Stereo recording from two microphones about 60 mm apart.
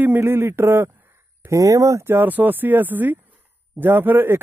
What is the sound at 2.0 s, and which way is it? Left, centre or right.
Speech, right.